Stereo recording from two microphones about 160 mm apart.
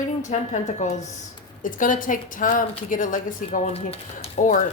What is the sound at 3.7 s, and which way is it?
Speech, 40° left (ahead or behind).